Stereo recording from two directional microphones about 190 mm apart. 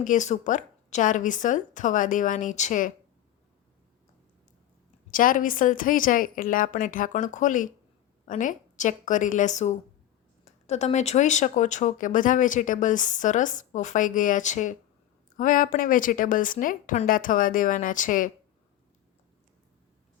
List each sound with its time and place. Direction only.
0.0 s speech: 40° left (ahead or behind)
5.1 s a woman's voice: 45° left (ahead or behind)